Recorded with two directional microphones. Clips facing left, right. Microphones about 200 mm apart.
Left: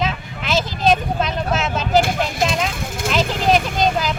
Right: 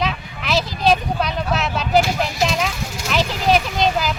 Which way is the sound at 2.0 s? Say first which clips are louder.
Even; 50° left (ahead or behind).